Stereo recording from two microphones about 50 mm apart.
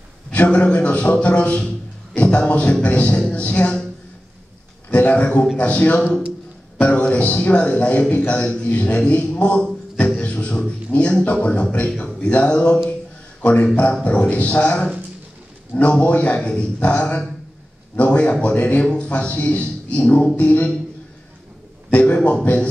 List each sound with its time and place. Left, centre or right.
0.3 s a man's voice: left
4.9 s a man's voice: left
9.9 s music: left
10.9 s a man's voice: left
21.9 s a man's voice: left